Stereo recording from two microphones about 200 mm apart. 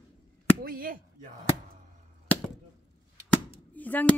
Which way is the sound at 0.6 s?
45° right (ahead or behind).